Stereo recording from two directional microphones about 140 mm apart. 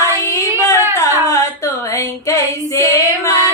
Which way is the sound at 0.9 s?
20° left (ahead or behind).